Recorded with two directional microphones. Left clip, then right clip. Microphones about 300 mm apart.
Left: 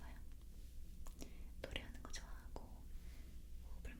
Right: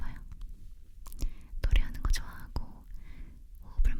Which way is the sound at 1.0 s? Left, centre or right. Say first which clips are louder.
Right 8 dB; right.